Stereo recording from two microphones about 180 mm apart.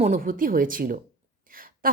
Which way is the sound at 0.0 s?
45° right (ahead or behind).